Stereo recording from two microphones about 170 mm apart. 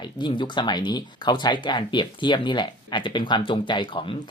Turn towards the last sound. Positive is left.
turn(degrees=30)  # may be behind; listen again after turning